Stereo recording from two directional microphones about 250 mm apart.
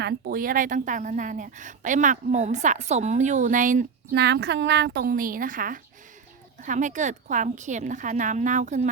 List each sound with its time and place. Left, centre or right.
0.0 s a woman's voice: right